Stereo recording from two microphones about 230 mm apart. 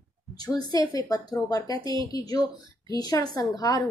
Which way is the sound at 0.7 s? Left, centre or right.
Centre.